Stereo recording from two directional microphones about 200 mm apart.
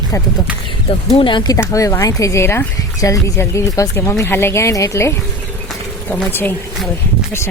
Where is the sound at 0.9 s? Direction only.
25° left (ahead or behind).